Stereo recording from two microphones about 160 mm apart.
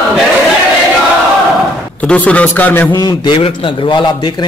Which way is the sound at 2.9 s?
25° left (ahead or behind).